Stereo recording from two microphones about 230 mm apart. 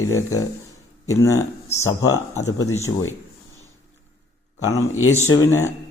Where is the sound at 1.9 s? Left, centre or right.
Left.